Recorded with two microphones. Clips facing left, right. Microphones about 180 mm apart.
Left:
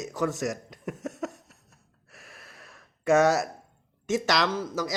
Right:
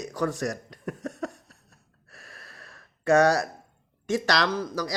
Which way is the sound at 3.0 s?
20° left (ahead or behind).